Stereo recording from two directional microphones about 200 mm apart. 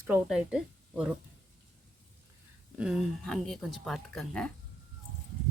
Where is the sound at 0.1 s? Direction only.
5° right (ahead or behind).